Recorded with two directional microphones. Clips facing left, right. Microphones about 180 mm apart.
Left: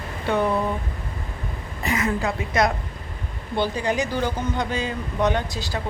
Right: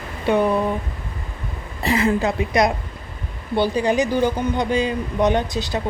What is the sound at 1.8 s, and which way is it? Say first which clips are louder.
A woman's voice: right 5 dB; 30° right (ahead or behind).